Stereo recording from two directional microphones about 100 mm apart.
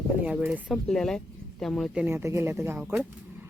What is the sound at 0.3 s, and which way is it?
Speech, 10° right (ahead or behind).